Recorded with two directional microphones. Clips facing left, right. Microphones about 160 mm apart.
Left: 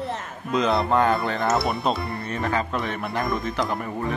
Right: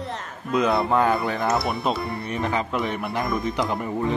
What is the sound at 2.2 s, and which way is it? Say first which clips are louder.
Speech: left 1 dB; 15° right (ahead or behind).